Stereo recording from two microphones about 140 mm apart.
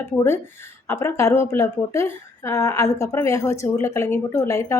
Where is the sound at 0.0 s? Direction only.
20° left (ahead or behind).